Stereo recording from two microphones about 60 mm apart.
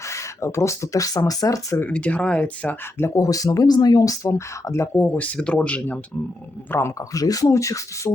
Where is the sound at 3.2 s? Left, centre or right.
Left.